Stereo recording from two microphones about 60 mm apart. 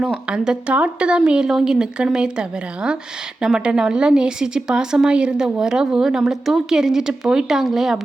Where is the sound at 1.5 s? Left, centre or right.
Centre.